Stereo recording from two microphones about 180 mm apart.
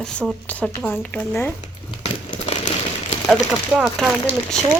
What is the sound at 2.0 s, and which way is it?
Crumpling, 35° left (ahead or behind).